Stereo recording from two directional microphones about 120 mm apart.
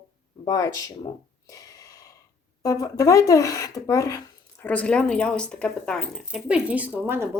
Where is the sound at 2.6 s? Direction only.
30° left (ahead or behind).